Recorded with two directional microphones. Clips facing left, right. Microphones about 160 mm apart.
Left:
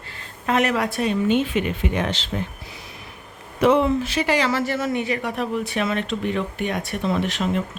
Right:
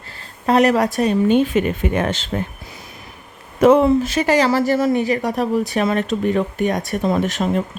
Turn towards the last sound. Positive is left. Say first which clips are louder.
# right 4 dB
turn(degrees=-45)  # may be behind; listen again after turning